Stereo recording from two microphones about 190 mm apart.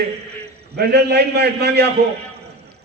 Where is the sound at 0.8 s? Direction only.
60° right (ahead or behind).